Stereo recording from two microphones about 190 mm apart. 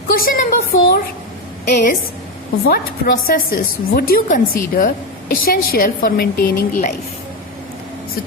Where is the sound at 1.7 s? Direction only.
45° left (ahead or behind).